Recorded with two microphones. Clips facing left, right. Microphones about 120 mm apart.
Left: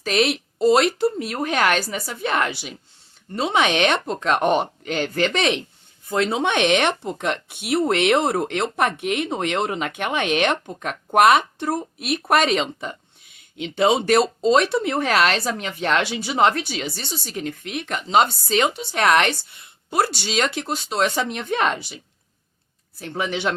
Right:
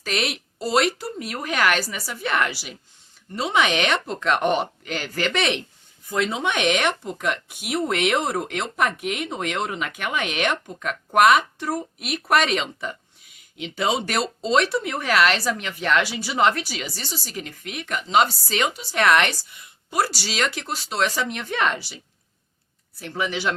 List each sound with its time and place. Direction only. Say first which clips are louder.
0.0 s speech: left 6 dB; 25° left (ahead or behind)
23.0 s speech: left 1 dB; 25° left (ahead or behind)